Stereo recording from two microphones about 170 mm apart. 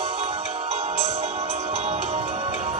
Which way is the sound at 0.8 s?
40° right (ahead or behind).